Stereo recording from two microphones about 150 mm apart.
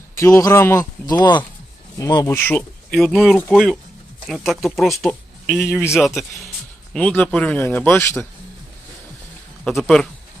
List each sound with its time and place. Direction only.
0.2 s speech: 20° left (ahead or behind)
9.6 s speech: 5° left (ahead or behind)